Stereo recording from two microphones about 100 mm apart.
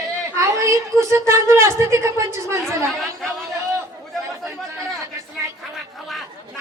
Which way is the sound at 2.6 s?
Centre (ahead or behind).